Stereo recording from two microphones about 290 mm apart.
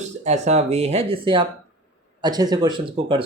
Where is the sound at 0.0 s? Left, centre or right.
Right.